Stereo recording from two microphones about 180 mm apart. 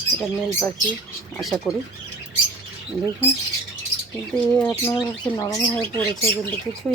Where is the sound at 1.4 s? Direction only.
Centre (ahead or behind).